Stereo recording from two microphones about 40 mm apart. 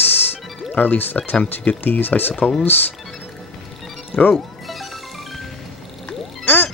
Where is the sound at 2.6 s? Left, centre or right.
Left.